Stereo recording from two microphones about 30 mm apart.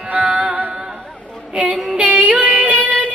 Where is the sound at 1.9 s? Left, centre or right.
Right.